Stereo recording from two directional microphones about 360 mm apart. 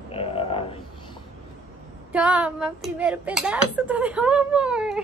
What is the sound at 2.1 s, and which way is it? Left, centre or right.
Speech, centre.